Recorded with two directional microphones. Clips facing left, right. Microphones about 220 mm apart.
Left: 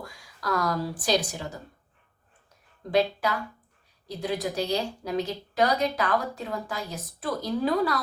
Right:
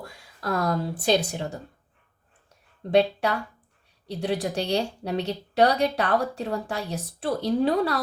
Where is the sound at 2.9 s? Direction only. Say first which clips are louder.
Right 3 dB; 30° right (ahead or behind).